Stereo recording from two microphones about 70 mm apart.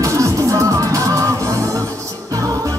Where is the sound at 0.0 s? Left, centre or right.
Right.